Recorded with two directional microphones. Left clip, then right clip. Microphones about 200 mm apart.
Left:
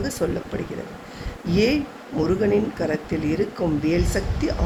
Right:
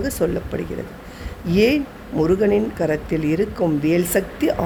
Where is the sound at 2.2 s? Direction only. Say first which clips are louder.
Right 3 dB; 35° right (ahead or behind).